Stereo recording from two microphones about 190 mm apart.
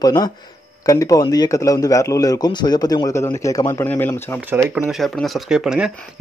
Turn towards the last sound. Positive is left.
turn(degrees=-5)  # may be behind; listen again after turning